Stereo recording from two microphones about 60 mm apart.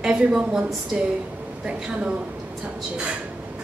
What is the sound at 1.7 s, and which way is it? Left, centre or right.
Speech, centre.